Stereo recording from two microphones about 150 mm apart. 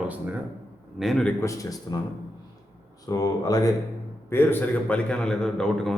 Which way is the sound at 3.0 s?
25° left (ahead or behind).